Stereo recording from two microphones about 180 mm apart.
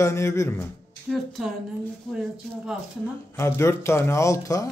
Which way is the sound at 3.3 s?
15° left (ahead or behind).